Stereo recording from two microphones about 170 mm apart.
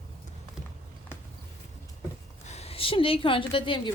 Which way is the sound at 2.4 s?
40° left (ahead or behind).